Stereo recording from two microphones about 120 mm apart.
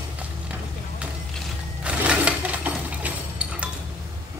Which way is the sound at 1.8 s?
10° right (ahead or behind).